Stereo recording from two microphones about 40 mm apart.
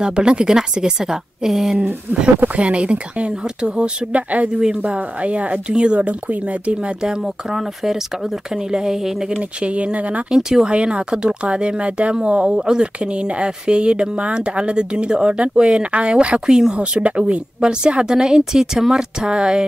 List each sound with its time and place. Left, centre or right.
0.0 s a woman's voice: right
2.5 s speech: right
4.1 s speech: right
4.5 s speech: right
5.7 s speech: right
7.0 s a woman's voice: centre
9.4 s speech: right
10.3 s speech: centre
16.7 s speech: right